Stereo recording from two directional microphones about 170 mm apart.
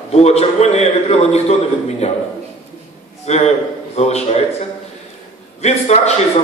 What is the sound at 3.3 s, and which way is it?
Speech, 40° left (ahead or behind).